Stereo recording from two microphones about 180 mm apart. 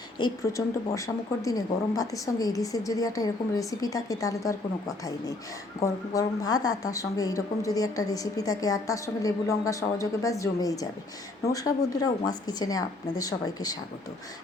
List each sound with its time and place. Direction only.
0.2 s speech: 20° left (ahead or behind)
5.8 s speech: 20° left (ahead or behind)